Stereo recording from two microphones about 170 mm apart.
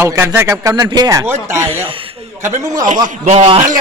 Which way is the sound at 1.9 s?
30° right (ahead or behind).